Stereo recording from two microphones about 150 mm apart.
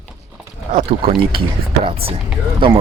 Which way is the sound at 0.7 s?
45° right (ahead or behind).